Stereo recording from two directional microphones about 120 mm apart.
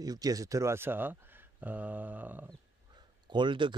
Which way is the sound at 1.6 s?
10° right (ahead or behind).